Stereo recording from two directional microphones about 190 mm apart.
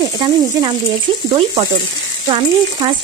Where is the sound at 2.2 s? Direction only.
25° right (ahead or behind).